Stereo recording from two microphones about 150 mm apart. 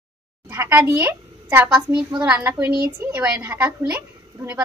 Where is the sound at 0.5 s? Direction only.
15° right (ahead or behind).